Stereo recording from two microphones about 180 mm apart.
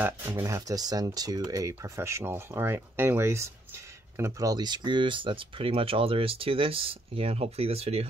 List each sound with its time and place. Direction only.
0.0 s speech: 10° right (ahead or behind); by 8.1 s 35° right (ahead or behind)